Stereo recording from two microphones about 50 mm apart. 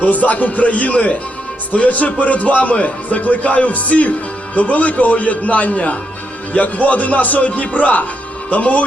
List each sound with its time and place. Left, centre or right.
0.0 s a man's voice: left